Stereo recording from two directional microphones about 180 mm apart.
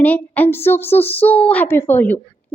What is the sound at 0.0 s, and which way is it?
A woman's voice, 10° left (ahead or behind).